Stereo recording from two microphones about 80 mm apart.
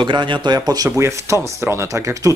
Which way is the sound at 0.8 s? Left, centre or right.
Right.